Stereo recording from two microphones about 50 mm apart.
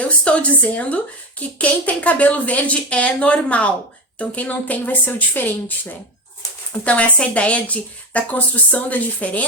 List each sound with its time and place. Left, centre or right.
0.0 s speech: left
6.8 s speech: left